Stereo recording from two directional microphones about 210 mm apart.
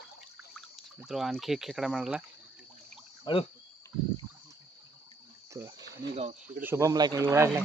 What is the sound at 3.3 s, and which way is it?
Speech, 20° left (ahead or behind).